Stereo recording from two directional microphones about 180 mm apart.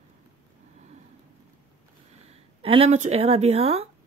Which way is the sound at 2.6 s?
30° right (ahead or behind).